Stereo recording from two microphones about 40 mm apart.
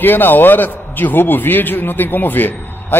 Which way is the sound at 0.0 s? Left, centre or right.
Left.